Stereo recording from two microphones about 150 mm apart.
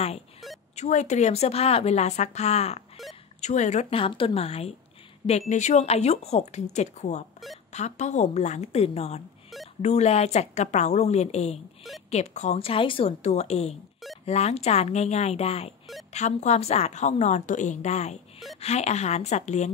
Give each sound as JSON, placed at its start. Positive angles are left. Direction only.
{"t": 0.7, "sound": "a woman's voice", "side_deg": 50}